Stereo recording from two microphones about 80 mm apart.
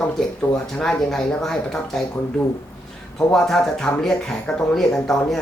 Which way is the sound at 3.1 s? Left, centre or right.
Centre.